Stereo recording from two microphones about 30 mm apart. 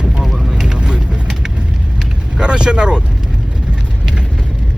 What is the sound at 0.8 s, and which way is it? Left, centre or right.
Vehicle, right.